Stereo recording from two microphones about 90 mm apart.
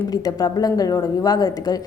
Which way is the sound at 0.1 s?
45° left (ahead or behind).